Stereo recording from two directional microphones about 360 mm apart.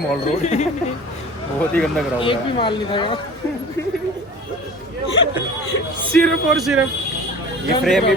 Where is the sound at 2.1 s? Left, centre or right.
Centre.